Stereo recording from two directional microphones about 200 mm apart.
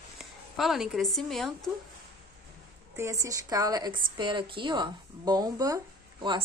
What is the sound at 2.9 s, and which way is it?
Speech, 15° right (ahead or behind).